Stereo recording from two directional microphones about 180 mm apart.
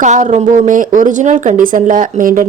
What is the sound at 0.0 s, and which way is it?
Speech, 40° right (ahead or behind).